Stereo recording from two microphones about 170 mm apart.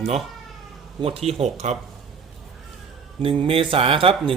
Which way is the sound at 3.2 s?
35° right (ahead or behind).